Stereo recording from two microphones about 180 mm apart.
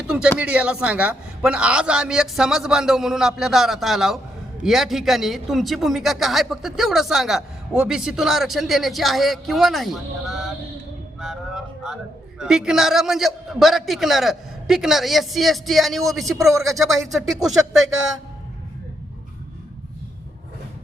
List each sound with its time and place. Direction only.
0.3 s a man's voice: 5° right (ahead or behind)
11.2 s music: centre (ahead or behind)
12.4 s a man's voice: 5° right (ahead or behind)